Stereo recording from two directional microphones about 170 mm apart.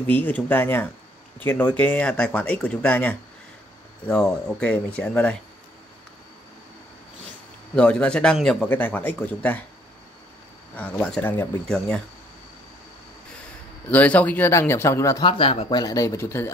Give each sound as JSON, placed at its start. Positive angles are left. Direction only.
{"t": 0.0, "sound": "a man's voice", "side_deg": 10}
{"t": 7.7, "sound": "a man's voice", "side_deg": 5}
{"t": 10.8, "sound": "speech", "side_deg": 5}
{"t": 13.8, "sound": "a man's voice", "side_deg": 10}
{"t": 15.2, "sound": "speech", "side_deg": 30}
{"t": 15.8, "sound": "a man's voice", "side_deg": 20}